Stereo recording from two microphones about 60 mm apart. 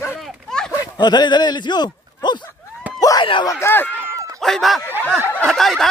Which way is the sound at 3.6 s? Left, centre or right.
Left.